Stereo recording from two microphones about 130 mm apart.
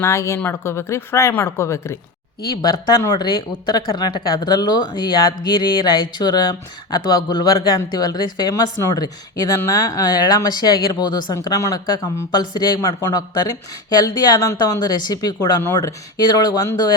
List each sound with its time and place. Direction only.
0.0 s speech: 20° left (ahead or behind)